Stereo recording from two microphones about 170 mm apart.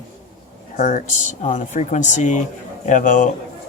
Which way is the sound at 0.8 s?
45° left (ahead or behind).